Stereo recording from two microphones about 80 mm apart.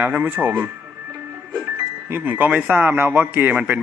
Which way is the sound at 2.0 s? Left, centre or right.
Right.